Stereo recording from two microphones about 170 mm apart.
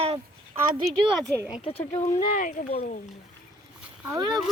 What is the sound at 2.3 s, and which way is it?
Speech, 55° left (ahead or behind).